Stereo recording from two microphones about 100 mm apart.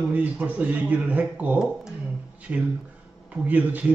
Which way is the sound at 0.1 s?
15° right (ahead or behind).